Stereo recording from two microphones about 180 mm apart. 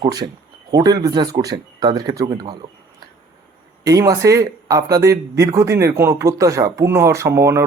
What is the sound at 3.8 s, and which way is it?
Speech, 20° right (ahead or behind).